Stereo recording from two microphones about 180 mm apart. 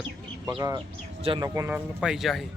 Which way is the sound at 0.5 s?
25° right (ahead or behind).